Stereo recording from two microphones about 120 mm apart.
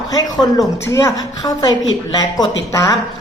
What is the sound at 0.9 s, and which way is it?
A woman's voice, 25° left (ahead or behind).